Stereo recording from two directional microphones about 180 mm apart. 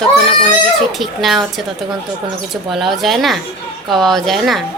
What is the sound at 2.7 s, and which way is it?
A woman's voice, centre (ahead or behind).